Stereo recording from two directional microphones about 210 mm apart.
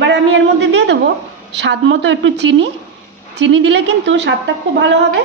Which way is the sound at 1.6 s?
60° right (ahead or behind).